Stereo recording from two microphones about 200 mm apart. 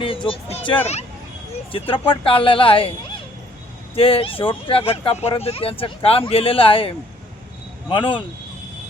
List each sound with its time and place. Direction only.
0.0 s music: 25° left (ahead or behind)
1.7 s speech: 25° left (ahead or behind)
3.9 s speech: 30° left (ahead or behind)